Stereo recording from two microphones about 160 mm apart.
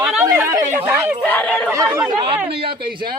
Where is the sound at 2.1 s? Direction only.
35° right (ahead or behind).